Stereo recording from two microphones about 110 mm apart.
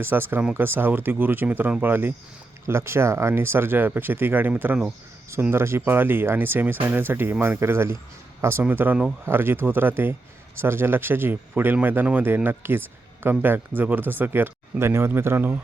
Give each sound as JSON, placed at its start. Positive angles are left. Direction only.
{"t": 0.0, "sound": "speech", "side_deg": -20}